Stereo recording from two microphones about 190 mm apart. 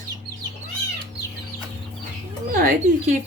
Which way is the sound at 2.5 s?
45° right (ahead or behind).